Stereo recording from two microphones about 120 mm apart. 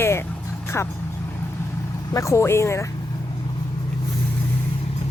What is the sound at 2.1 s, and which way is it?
Speech, 25° left (ahead or behind).